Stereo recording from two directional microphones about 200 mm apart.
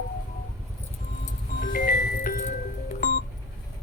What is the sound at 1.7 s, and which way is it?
Music, 45° left (ahead or behind).